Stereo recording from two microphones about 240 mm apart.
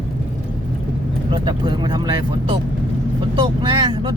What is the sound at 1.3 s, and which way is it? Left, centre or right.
Speech, centre.